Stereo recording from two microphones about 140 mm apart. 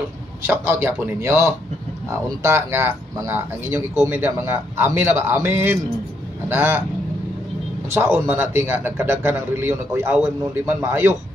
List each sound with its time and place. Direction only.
0.5 s a man's voice: 15° right (ahead or behind)
7.9 s a man's voice: 20° right (ahead or behind)